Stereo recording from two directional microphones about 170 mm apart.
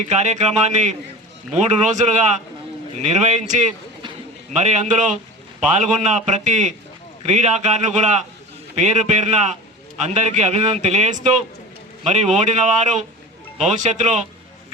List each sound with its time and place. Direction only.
0.0 s a man's voice: 45° right (ahead or behind)